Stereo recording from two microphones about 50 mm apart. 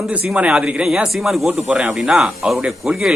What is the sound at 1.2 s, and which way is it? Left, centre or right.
Speech, centre.